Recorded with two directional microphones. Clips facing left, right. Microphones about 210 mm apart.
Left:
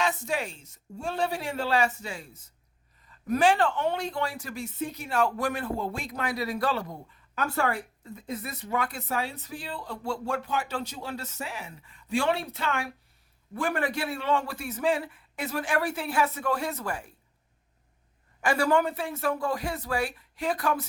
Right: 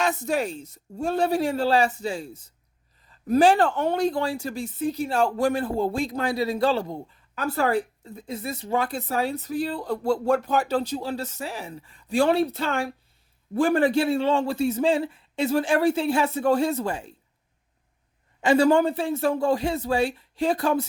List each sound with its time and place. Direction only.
0.0 s a woman's voice: 40° right (ahead or behind); by 17.2 s 25° right (ahead or behind)
18.3 s a man's voice: 25° right (ahead or behind)